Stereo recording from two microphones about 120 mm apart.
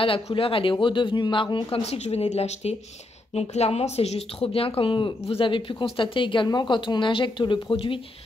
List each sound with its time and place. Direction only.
0.0 s speech: 50° left (ahead or behind)